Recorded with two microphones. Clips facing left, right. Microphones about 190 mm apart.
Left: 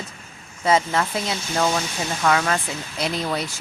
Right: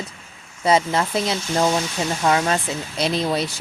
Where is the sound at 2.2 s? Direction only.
25° right (ahead or behind).